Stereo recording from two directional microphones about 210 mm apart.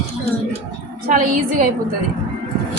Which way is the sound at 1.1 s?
40° right (ahead or behind).